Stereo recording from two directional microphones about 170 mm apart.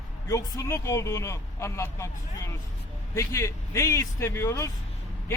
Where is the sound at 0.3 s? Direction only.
20° left (ahead or behind).